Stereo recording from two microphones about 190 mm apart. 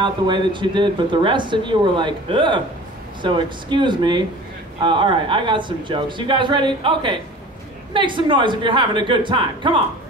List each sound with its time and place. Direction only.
0.0 s speech: 25° right (ahead or behind)